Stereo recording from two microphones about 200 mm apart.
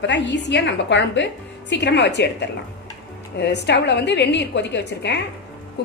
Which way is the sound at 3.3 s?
55° left (ahead or behind).